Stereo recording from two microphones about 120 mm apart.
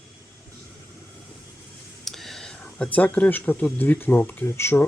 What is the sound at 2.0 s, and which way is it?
Speech, centre (ahead or behind).